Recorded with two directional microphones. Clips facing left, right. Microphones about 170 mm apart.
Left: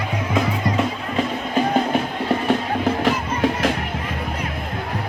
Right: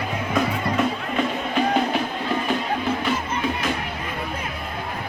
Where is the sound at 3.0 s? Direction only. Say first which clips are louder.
Left 4 dB; 85° left.